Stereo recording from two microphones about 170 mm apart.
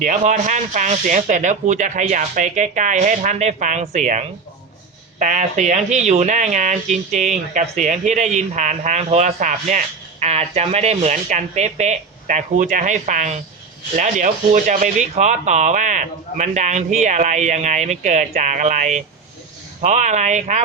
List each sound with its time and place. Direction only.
0.0 s speech: 45° right (ahead or behind)